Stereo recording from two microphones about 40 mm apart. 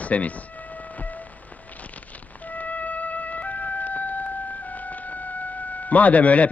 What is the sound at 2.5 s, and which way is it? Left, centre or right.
Music, left.